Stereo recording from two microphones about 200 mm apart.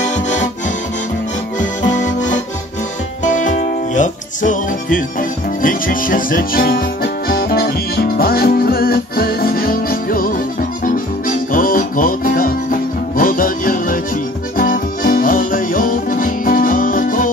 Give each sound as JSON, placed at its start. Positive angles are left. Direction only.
{"t": 0.0, "sound": "music", "side_deg": 35}
{"t": 3.3, "sound": "music", "side_deg": 40}